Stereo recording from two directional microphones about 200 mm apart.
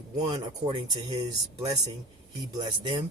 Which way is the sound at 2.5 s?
20° right (ahead or behind).